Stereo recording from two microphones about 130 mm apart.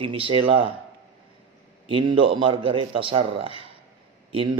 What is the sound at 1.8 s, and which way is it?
A man's voice, 40° right (ahead or behind).